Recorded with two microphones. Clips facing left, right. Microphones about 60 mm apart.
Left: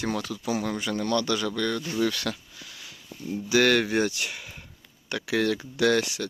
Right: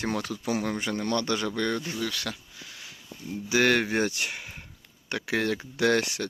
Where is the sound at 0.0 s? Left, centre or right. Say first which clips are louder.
Left 1 dB; right.